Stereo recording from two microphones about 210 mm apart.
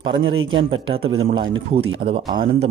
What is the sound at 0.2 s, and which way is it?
A man's voice, 70° right (ahead or behind).